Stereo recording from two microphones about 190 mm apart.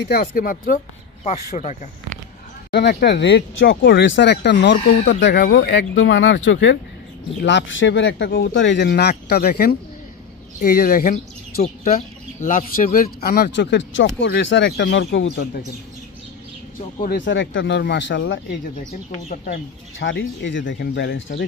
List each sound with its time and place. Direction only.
0.0 s speech: 55° left (ahead or behind)
1.2 s speech: 35° left (ahead or behind)
2.9 s speech: 60° left (ahead or behind)
11.6 s speech: 45° left (ahead or behind); by 15.6 s 65° left (ahead or behind)
17.2 s speech: 75° left (ahead or behind)
19.2 s speech: 45° left (ahead or behind)
20.0 s speech: 70° left (ahead or behind)